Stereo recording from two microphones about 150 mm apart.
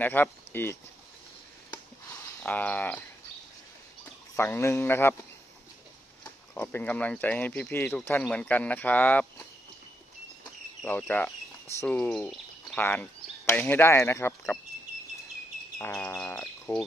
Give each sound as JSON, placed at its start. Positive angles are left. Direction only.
{"t": 0.0, "sound": "speech", "side_deg": 15}
{"t": 2.4, "sound": "speech", "side_deg": 10}
{"t": 6.5, "sound": "speech", "side_deg": 10}
{"t": 10.9, "sound": "speech", "side_deg": 10}
{"t": 15.8, "sound": "speech", "side_deg": 10}